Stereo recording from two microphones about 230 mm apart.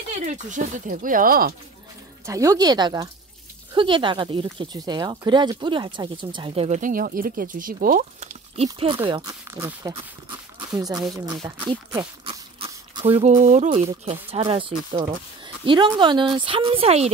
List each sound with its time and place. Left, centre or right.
0.2 s speech: right
2.2 s speech: centre; by 8.6 s right
8.6 s speech: right